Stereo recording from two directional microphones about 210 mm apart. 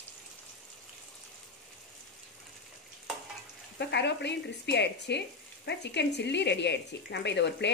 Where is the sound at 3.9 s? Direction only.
55° left (ahead or behind).